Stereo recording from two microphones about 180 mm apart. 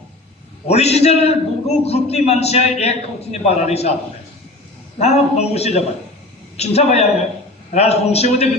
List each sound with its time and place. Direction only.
0.7 s a man's voice: 35° left (ahead or behind)
4.9 s a man's voice: 35° left (ahead or behind)